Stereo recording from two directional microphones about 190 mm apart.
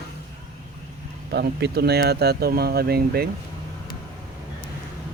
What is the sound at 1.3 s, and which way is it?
Speech, 60° right (ahead or behind).